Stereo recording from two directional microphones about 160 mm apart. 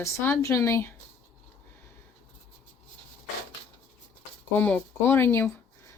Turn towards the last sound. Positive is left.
turn(degrees=15)  # may be behind; listen again after turning